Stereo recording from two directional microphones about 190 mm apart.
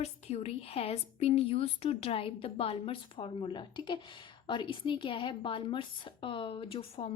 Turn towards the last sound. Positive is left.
turn(degrees=30)  # may be behind; listen again after turning